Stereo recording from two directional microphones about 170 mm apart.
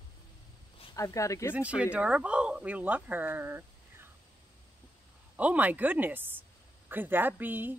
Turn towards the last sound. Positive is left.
turn(degrees=-10)  # may be behind; listen again after turning